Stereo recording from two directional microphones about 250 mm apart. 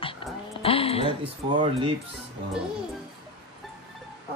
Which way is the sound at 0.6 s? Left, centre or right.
Left.